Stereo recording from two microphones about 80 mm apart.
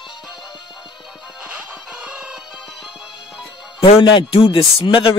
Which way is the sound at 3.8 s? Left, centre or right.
Left.